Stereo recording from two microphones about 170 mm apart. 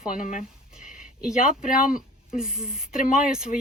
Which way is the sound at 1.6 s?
50° left (ahead or behind).